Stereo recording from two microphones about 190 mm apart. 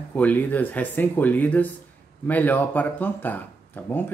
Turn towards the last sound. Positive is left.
turn(degrees=10)  # may be behind; listen again after turning